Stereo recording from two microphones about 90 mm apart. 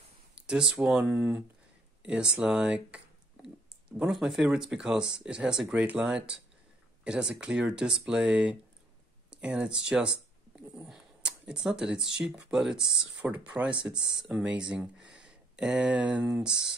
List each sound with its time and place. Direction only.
0.5 s speech: 5° right (ahead or behind)
1.1 s speech: 20° right (ahead or behind)